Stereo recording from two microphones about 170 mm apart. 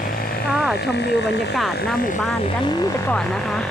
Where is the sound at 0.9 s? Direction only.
80° left.